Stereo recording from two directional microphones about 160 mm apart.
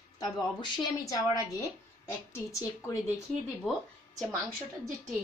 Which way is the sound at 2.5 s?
20° left (ahead or behind).